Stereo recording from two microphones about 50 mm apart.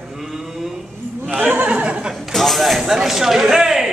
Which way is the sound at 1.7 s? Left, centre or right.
Right.